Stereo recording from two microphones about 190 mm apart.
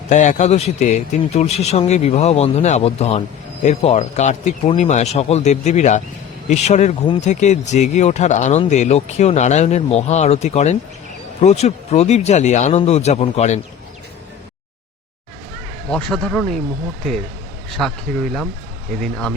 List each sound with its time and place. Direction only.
0.1 s a man's voice: 40° left (ahead or behind)
15.9 s speech: 5° left (ahead or behind)
17.8 s speech: 5° left (ahead or behind)
19.0 s speech: 5° left (ahead or behind)